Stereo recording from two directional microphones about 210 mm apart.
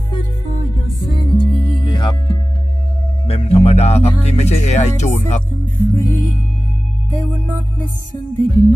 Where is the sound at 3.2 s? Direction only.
30° left (ahead or behind).